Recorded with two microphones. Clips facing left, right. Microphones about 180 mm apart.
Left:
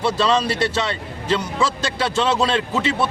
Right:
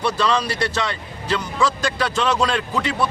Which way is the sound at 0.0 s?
25° left (ahead or behind).